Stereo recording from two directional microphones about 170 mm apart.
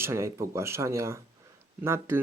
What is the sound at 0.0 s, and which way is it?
Speech, 15° right (ahead or behind).